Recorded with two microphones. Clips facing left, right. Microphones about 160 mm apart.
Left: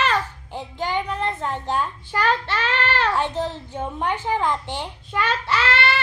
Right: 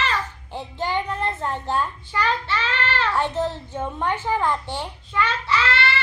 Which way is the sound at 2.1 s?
55° left (ahead or behind).